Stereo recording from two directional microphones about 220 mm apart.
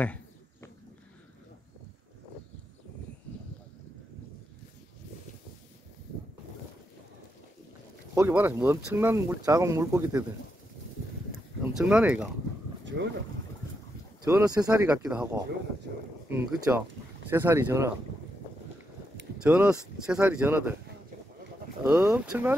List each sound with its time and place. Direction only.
0.0 s a sound: 5° left (ahead or behind)
8.1 s speech: 10° right (ahead or behind)
11.6 s speech: 5° right (ahead or behind)
12.8 s boat: 55° right (ahead or behind)
14.2 s speech: 15° right (ahead or behind)
14.9 s speech: 5° right (ahead or behind)
16.7 s speech: 10° right (ahead or behind)
19.3 s speech: 5° right (ahead or behind)
21.8 s speech: 5° right (ahead or behind)